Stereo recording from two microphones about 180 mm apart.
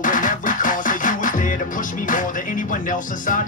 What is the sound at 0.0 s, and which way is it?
Music, 45° left (ahead or behind).